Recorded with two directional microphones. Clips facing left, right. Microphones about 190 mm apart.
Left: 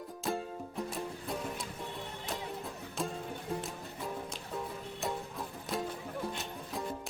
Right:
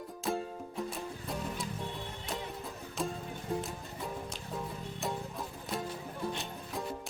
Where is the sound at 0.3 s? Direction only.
Centre (ahead or behind).